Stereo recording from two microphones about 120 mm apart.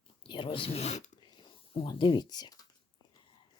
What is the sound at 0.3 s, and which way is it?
Speech, 45° left (ahead or behind).